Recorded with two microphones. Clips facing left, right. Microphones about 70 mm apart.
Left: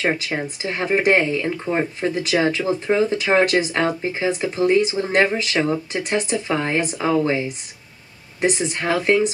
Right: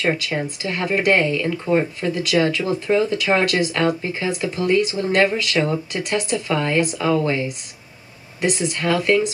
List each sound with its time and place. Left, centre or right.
0.0 s speech: left
8.4 s speech: left